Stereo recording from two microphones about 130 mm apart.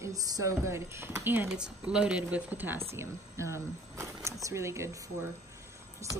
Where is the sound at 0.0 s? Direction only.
25° right (ahead or behind).